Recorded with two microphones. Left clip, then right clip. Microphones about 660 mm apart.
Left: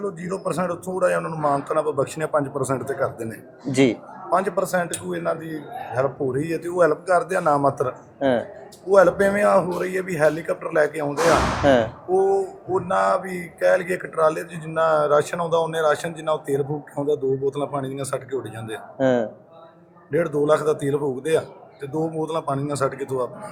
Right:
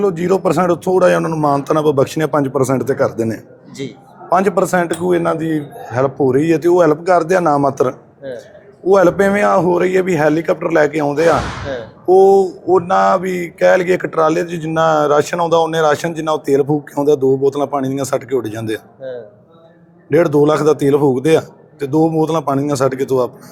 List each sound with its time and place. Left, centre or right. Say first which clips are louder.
0.0 s mantra: right 13 dB; right
18.9 s a man's voice: left 7 dB; left
20.1 s mantra: right 8 dB; right